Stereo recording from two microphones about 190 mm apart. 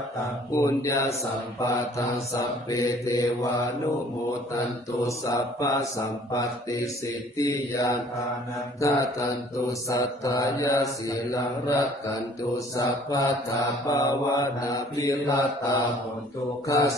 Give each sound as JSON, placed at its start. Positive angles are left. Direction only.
{"t": 0.6, "sound": "mantra", "side_deg": 15}
{"t": 4.6, "sound": "mantra", "side_deg": 15}